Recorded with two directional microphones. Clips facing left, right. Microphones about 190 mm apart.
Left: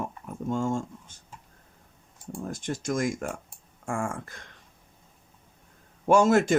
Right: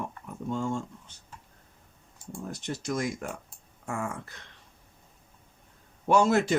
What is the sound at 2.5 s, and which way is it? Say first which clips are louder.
Speech: left 2 dB; 50° left (ahead or behind).